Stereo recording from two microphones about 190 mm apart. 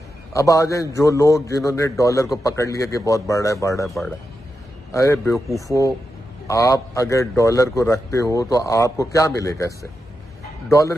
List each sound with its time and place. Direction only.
0.3 s a man's voice: 15° left (ahead or behind)
4.9 s a man's voice: 15° left (ahead or behind)